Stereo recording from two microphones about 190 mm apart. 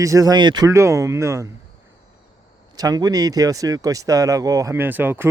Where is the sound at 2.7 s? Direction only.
20° right (ahead or behind).